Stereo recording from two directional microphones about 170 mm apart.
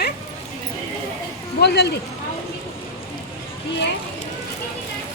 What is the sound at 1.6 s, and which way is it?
Speech, 75° left (ahead or behind).